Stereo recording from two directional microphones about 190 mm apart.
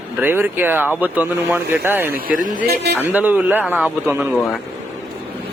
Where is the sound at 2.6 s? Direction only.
55° right (ahead or behind).